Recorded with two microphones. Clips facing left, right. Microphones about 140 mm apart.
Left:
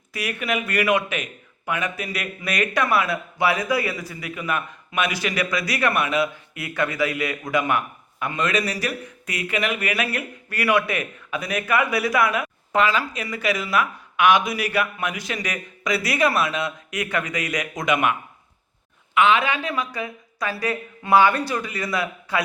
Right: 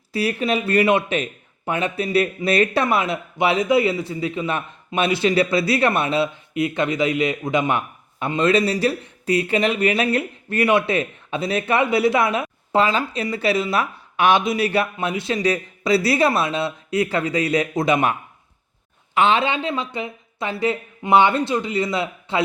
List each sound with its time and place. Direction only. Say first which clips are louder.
0.1 s a man's voice: right 5 dB; 30° right (ahead or behind)